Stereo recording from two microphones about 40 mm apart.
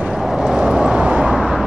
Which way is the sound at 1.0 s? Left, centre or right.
Right.